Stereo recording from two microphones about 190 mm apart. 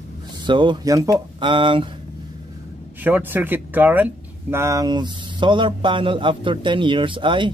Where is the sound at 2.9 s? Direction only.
10° right (ahead or behind).